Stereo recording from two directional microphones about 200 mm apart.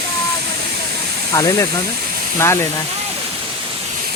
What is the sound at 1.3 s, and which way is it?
Speech, 15° left (ahead or behind).